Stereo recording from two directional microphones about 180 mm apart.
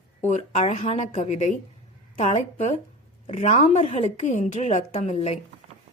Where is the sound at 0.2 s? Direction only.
40° left (ahead or behind).